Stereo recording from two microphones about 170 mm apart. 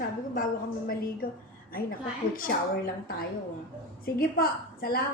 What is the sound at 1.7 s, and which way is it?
A woman's voice, 55° left (ahead or behind).